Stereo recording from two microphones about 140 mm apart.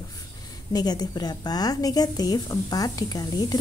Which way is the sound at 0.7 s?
30° left (ahead or behind).